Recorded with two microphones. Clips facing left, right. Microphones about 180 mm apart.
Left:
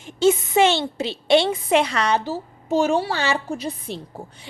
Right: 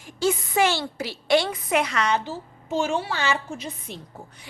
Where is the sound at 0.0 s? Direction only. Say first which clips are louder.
Left 6 dB; 25° left (ahead or behind).